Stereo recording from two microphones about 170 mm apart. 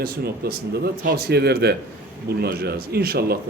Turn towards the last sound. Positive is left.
turn(degrees=-65)  # may be behind; listen again after turning